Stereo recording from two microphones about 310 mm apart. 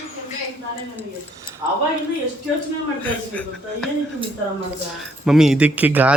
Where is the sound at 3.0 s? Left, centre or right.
Centre.